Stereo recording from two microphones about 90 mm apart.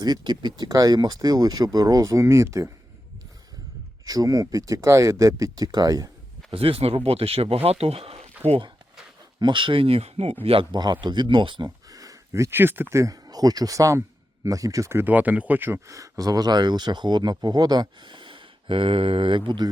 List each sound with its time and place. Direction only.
0.0 s speech: 50° right (ahead or behind)
0.7 s speech: 45° right (ahead or behind)
4.0 s speech: 40° right (ahead or behind)
6.5 s speech: 90° right
9.4 s a man's voice: 65° right (ahead or behind)
11.0 s speech: 60° right (ahead or behind)
11.9 s speech: 40° right (ahead or behind)
15.0 s speech: 20° right (ahead or behind)
15.9 s speech: 40° right (ahead or behind); by 19.4 s 85° right